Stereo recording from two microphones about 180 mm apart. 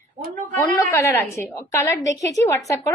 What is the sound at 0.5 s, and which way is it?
A woman's voice, 15° left (ahead or behind).